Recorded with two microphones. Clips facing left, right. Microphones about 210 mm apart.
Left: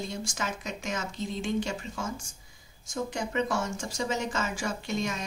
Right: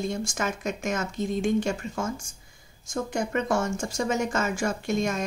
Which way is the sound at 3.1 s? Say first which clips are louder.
Right 4 dB; 50° right (ahead or behind).